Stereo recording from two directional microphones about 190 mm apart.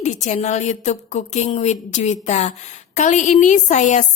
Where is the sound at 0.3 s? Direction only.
35° left (ahead or behind).